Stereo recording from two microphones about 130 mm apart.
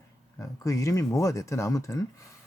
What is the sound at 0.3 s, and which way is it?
Speech, 25° left (ahead or behind).